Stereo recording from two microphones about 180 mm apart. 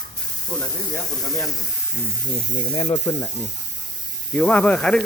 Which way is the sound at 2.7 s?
30° left (ahead or behind).